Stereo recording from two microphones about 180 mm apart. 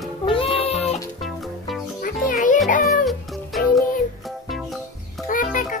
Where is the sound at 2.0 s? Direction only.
45° left (ahead or behind).